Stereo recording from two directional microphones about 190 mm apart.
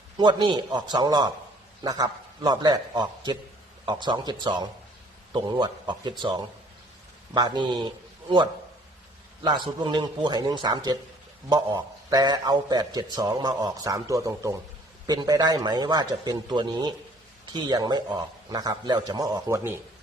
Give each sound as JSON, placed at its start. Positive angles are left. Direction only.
{"t": 0.2, "sound": "a man's voice", "side_deg": -25}
{"t": 9.8, "sound": "a man's voice", "side_deg": -25}